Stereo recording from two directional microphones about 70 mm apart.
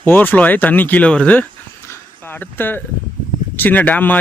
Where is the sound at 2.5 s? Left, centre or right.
Left.